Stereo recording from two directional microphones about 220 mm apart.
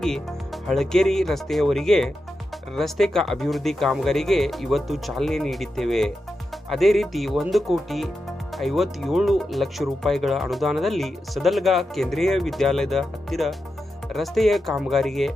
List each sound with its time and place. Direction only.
0.7 s speech: centre (ahead or behind)